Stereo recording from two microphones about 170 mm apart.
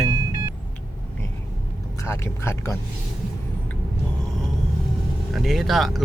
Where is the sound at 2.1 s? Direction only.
15° left (ahead or behind).